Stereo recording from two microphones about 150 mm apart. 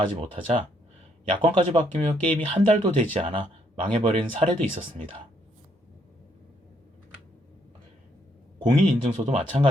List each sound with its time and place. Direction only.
0.0 s speech: 35° right (ahead or behind)
8.6 s speech: 35° right (ahead or behind)